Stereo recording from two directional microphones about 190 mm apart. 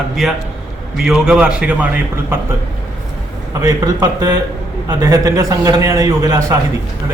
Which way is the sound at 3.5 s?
15° right (ahead or behind).